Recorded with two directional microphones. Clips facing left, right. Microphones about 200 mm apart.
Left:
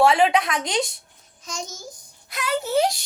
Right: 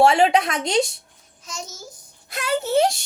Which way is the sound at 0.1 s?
25° right (ahead or behind).